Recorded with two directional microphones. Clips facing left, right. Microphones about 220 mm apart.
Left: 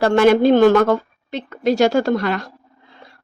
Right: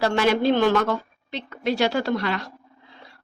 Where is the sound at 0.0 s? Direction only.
50° left (ahead or behind).